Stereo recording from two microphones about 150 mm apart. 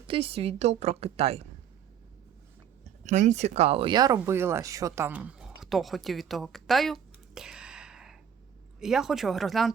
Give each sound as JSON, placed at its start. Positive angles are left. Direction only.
{"t": 0.1, "sound": "a woman's voice", "side_deg": -40}
{"t": 3.0, "sound": "speech", "side_deg": -55}
{"t": 4.3, "sound": "speech", "side_deg": -15}